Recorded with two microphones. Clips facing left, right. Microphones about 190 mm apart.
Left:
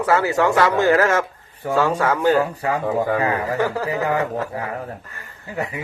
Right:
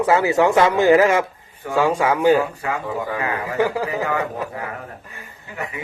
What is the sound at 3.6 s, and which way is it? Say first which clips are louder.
Speech: right 6 dB; 15° right (ahead or behind).